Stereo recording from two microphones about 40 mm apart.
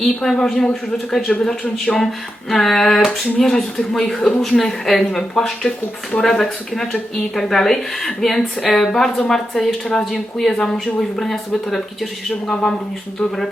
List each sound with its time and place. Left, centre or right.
0.0 s speech: centre